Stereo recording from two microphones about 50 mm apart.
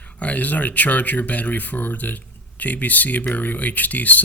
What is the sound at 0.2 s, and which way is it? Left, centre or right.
Speech, left.